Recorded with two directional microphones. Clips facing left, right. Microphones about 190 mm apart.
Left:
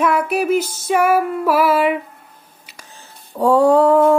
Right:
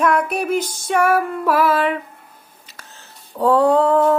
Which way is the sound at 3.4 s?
10° left (ahead or behind).